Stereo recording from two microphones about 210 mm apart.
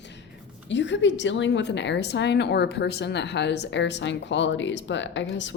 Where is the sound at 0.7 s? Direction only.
60° left (ahead or behind).